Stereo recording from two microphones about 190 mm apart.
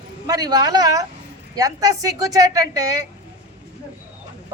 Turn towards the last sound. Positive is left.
turn(degrees=-20)  # may be behind; listen again after turning